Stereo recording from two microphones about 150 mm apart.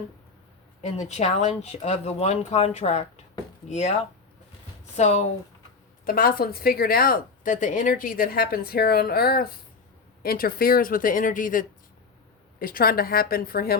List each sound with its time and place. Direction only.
0.8 s speech: 50° left (ahead or behind)
5.0 s speech: 45° left (ahead or behind)
6.1 s a woman's voice: 75° left (ahead or behind)
10.2 s speech: 75° left (ahead or behind)
12.5 s speech: 75° left (ahead or behind)